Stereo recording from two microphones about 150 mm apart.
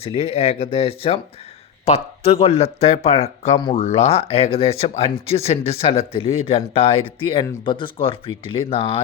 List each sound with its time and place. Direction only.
0.0 s speech: 40° left (ahead or behind)